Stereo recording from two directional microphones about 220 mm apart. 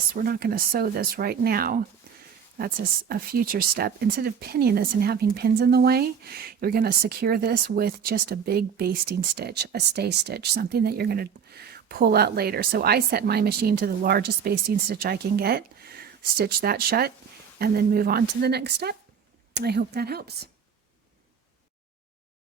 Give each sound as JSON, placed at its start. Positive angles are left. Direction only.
{"t": 0.1, "sound": "speech", "side_deg": -40}